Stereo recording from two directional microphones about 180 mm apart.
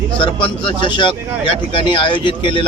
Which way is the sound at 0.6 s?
25° left (ahead or behind).